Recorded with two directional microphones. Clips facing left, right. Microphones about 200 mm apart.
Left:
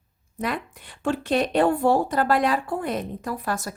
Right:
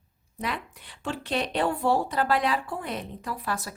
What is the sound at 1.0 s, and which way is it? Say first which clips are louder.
Speech: left 7 dB; 50° left (ahead or behind).